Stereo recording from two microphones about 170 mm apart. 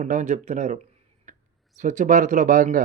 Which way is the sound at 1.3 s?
45° right (ahead or behind).